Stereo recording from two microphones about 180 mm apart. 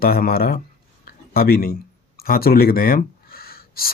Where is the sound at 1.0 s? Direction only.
55° left (ahead or behind).